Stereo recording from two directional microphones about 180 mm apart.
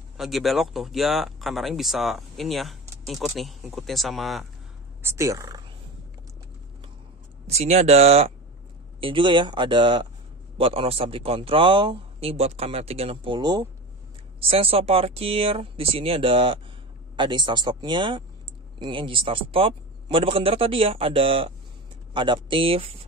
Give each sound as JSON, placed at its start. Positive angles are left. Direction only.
{"t": 0.2, "sound": "speech", "side_deg": 0}
{"t": 5.0, "sound": "speech", "side_deg": -15}
{"t": 7.4, "sound": "speech", "side_deg": -35}